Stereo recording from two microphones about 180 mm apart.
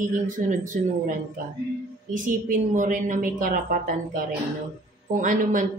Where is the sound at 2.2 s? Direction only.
45° right (ahead or behind).